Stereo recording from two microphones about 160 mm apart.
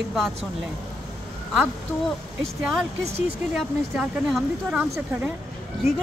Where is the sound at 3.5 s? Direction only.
Centre (ahead or behind).